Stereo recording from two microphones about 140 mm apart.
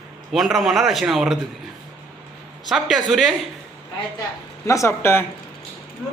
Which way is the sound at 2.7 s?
Centre (ahead or behind).